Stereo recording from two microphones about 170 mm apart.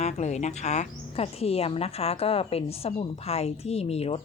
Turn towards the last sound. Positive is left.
turn(degrees=40)  # may be behind; listen again after turning